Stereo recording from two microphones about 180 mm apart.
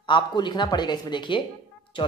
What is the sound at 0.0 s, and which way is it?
Speech, 25° left (ahead or behind).